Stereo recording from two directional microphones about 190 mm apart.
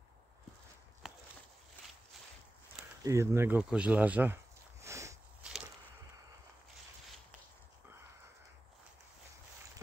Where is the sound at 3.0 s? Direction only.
15° right (ahead or behind).